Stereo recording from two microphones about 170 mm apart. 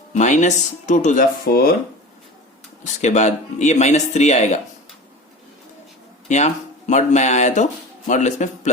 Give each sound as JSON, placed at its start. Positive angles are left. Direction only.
{"t": 0.1, "sound": "speech", "side_deg": 45}
{"t": 2.8, "sound": "speech", "side_deg": 40}
{"t": 6.2, "sound": "speech", "side_deg": 40}